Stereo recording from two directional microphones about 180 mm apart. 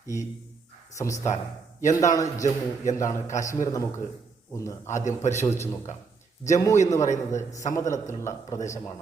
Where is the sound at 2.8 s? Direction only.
45° left (ahead or behind).